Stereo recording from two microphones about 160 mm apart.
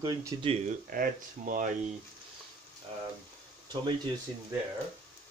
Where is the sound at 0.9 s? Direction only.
60° right (ahead or behind).